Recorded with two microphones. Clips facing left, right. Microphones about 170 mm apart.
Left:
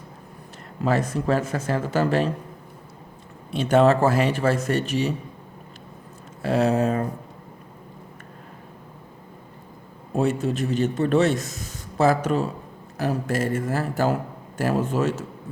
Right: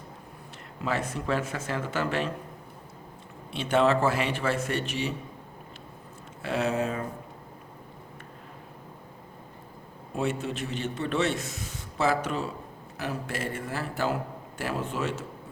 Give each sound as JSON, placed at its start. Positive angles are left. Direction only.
{"t": 0.9, "sound": "a man's voice", "side_deg": 40}
{"t": 3.5, "sound": "a man's voice", "side_deg": 40}
{"t": 6.4, "sound": "a man's voice", "side_deg": 40}
{"t": 10.2, "sound": "a man's voice", "side_deg": 40}